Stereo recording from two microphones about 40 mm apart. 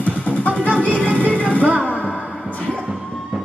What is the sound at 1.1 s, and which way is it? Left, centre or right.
Music, right.